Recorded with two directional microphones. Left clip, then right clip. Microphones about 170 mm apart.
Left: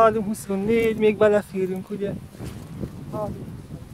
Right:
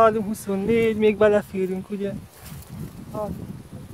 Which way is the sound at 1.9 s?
25° right (ahead or behind).